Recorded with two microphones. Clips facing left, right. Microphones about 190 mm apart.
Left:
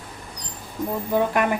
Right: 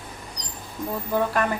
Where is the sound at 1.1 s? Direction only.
15° left (ahead or behind).